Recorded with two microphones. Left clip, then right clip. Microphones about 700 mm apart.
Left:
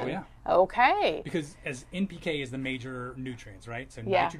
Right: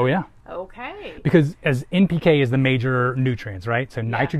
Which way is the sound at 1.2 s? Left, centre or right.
Right.